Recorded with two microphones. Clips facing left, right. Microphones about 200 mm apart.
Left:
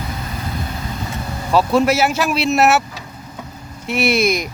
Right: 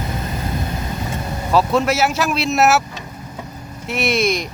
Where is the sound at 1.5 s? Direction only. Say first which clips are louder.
Left 2 dB; centre (ahead or behind).